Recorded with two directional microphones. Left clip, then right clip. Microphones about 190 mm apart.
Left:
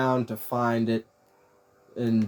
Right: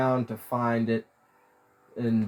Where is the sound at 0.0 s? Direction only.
50° left (ahead or behind).